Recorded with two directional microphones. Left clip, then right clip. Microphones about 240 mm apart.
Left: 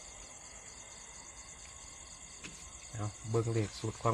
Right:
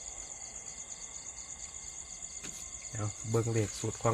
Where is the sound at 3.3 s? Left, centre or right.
Right.